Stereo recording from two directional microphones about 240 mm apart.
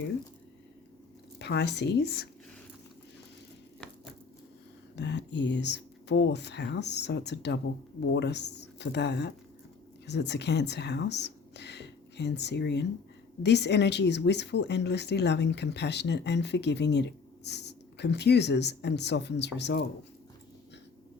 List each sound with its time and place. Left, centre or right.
1.4 s speech: left
4.9 s speech: left